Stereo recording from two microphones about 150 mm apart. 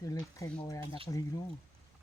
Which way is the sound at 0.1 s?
20° left (ahead or behind).